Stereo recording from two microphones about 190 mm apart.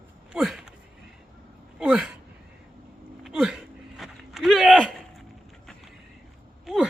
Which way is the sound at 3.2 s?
5° right (ahead or behind).